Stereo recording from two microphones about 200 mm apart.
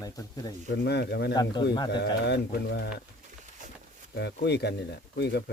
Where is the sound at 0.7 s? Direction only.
55° left (ahead or behind).